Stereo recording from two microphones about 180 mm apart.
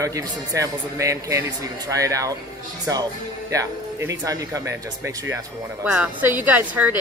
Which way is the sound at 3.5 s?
15° right (ahead or behind).